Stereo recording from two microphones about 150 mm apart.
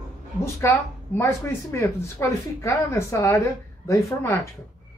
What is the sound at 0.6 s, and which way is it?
A woman's voice, 20° left (ahead or behind).